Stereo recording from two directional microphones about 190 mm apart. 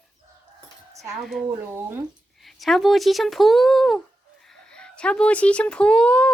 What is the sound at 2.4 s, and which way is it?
Speech, centre (ahead or behind).